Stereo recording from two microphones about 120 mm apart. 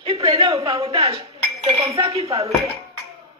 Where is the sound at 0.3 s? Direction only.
55° right (ahead or behind).